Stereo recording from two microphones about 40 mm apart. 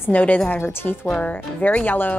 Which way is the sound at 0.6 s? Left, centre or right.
Left.